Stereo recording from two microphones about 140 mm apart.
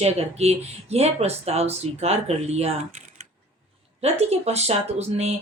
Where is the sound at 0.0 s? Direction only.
50° right (ahead or behind).